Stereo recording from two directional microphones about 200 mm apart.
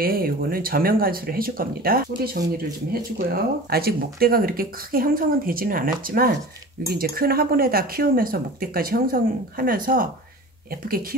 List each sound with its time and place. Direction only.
0.0 s speech: 45° right (ahead or behind)